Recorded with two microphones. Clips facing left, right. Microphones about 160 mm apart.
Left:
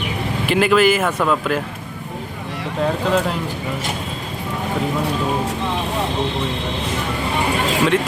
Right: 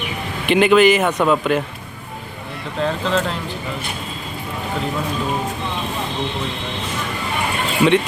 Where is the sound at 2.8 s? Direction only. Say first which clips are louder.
Left 1 dB; 5° left (ahead or behind).